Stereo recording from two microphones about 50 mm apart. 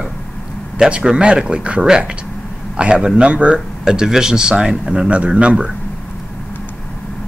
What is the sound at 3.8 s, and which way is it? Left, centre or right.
Speech, centre.